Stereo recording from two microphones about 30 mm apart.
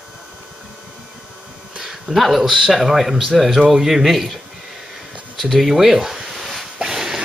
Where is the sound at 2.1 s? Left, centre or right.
Centre.